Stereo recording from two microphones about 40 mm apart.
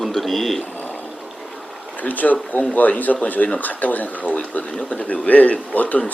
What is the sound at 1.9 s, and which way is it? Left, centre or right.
Speech, left.